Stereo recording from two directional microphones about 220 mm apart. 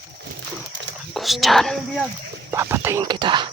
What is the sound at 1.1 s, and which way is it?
Speech, centre (ahead or behind).